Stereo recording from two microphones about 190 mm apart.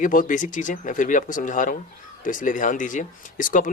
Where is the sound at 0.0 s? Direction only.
45° left (ahead or behind).